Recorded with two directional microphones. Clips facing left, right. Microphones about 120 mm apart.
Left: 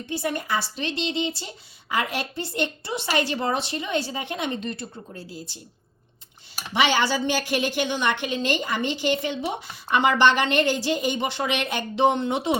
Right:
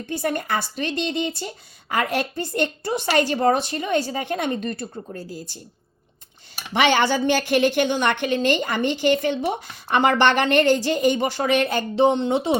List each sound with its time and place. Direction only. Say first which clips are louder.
0.1 s a woman's voice: right 2 dB; 50° right (ahead or behind)
6.7 s a woman's voice: right 3 dB; 55° right (ahead or behind); by 12.5 s 30° right (ahead or behind)